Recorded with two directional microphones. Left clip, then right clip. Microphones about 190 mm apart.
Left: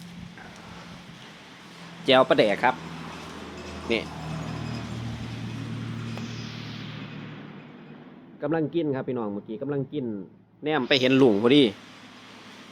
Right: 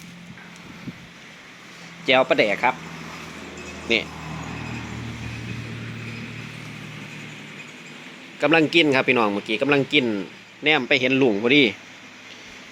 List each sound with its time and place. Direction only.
2.0 s speech: 15° left (ahead or behind)
3.9 s speech: centre (ahead or behind)
8.4 s speech: 15° right (ahead or behind)
10.8 s speech: 10° left (ahead or behind)